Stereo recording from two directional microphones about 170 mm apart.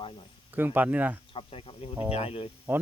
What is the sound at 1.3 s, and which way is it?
Speech, 30° left (ahead or behind).